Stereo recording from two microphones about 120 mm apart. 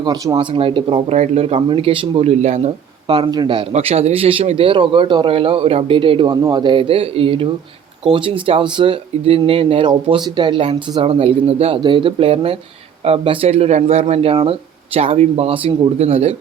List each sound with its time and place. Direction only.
0.0 s speech: 35° right (ahead or behind)
1.1 s a man's voice: 65° right (ahead or behind); by 3.7 s 40° right (ahead or behind)
3.7 s speech: 60° right (ahead or behind); by 6.3 s 45° right (ahead or behind)
6.3 s speech: 30° right (ahead or behind); by 11.8 s 55° right (ahead or behind)
11.8 s speech: 45° right (ahead or behind); by 16.3 s 60° right (ahead or behind)